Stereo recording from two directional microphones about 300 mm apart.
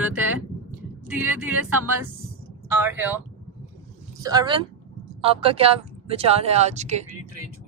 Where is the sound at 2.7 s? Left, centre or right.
Centre.